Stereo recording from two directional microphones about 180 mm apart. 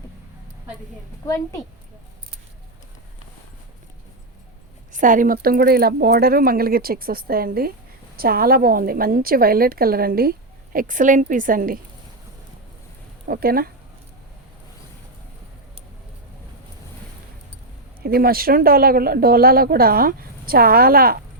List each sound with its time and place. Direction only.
4.9 s a woman's voice: 45° right (ahead or behind)
13.2 s a woman's voice: 55° right (ahead or behind)
18.0 s a woman's voice: 55° right (ahead or behind)